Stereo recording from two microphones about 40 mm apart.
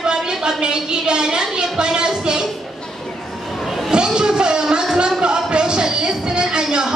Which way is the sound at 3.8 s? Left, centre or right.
Centre.